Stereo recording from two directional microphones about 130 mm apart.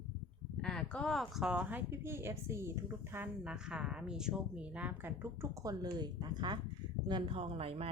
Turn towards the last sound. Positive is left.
turn(degrees=-50)  # may be behind; listen again after turning